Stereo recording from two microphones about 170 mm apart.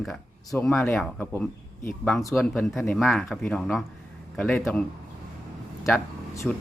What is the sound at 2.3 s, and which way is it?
Speech, centre (ahead or behind).